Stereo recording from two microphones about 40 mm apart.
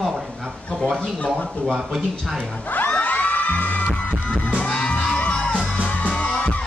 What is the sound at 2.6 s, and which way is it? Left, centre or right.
Music, left.